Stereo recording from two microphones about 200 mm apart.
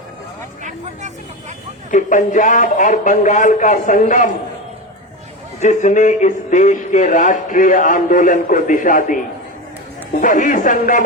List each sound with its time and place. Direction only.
1.9 s speech: 40° left (ahead or behind)
5.5 s speech: 35° left (ahead or behind)